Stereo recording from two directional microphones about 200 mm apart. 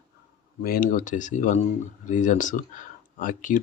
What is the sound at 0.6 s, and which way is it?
Speech, 45° left (ahead or behind).